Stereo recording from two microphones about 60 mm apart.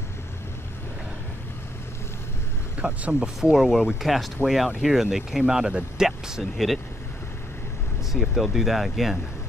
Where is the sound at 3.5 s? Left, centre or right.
Centre.